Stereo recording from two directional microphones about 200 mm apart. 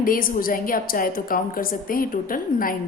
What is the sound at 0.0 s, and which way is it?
A woman's voice, 45° left (ahead or behind).